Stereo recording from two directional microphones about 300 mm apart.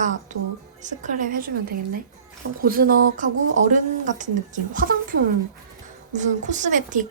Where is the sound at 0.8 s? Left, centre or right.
Right.